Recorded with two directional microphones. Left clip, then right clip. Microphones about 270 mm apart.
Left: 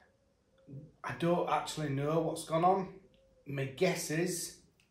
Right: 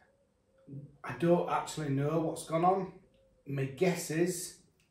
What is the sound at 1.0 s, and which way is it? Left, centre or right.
Speech, centre.